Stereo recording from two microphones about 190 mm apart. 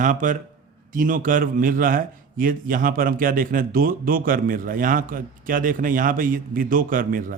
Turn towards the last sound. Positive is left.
turn(degrees=-45)  # may be behind; listen again after turning